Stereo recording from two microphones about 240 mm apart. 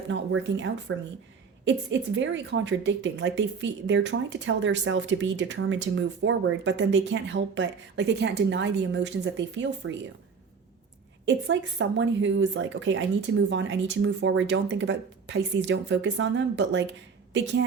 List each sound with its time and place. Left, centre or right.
0.1 s speech: right
11.3 s speech: right